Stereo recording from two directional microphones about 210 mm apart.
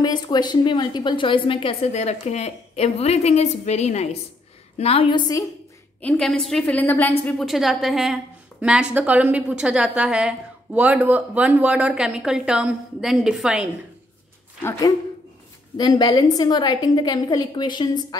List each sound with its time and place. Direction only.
0.0 s a woman's voice: 20° left (ahead or behind)
5.9 s a woman's voice: 5° left (ahead or behind)
14.6 s a woman's voice: 10° left (ahead or behind)